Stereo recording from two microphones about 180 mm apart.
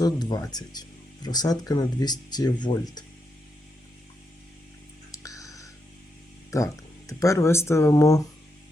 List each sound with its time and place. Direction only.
0.0 s speech: 20° left (ahead or behind)
5.1 s a sound: 20° left (ahead or behind)
6.5 s speech: 15° left (ahead or behind)